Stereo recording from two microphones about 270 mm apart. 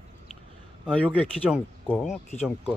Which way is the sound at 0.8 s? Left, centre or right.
Centre.